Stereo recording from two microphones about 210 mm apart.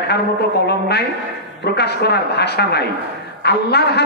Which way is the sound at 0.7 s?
50° left (ahead or behind).